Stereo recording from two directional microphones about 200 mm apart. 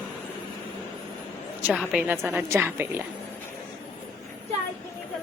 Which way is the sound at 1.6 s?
5° right (ahead or behind).